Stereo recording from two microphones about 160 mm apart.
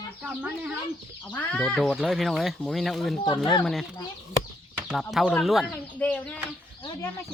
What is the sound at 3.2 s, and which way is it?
Speech, 25° left (ahead or behind).